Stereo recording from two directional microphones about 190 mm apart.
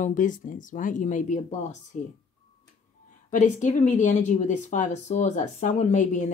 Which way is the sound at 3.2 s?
40° left (ahead or behind).